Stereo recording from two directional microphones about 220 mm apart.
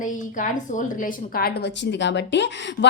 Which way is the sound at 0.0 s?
35° left (ahead or behind).